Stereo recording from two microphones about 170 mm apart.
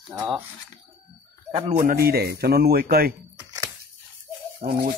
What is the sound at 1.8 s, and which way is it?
A man's voice, 60° right (ahead or behind).